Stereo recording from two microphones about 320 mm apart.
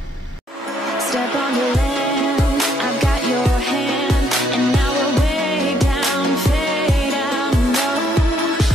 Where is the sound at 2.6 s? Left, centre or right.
Centre.